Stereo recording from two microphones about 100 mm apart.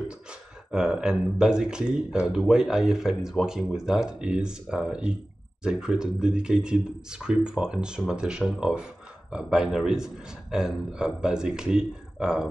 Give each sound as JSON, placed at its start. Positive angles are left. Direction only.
{"t": 0.1, "sound": "speech", "side_deg": -10}